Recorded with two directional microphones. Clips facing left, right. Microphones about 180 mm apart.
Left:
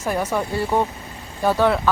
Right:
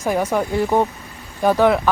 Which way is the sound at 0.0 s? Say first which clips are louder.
Right 3 dB; 10° right (ahead or behind).